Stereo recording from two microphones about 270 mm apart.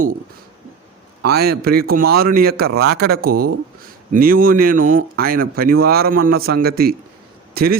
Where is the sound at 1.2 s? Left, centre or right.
Right.